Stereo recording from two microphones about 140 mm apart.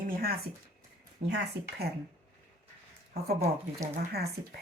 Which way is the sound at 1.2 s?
50° right (ahead or behind).